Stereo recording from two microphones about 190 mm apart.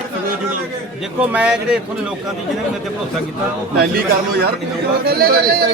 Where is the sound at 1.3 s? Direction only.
5° right (ahead or behind).